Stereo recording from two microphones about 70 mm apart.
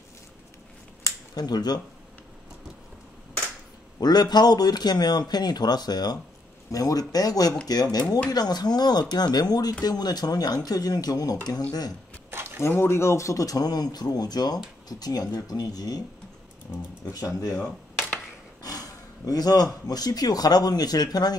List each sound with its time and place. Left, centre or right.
1.3 s speech: left
4.0 s a man's voice: left
6.7 s speech: left
12.3 s a sound: right
12.5 s speech: left
17.0 s speech: left
18.6 s speech: left